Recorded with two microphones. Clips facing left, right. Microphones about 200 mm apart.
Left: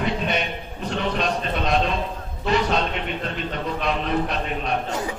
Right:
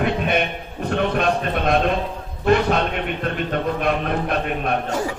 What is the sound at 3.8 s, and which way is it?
Speech, 55° right (ahead or behind).